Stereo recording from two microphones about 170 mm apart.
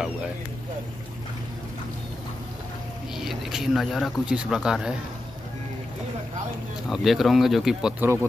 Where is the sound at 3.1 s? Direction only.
Centre (ahead or behind).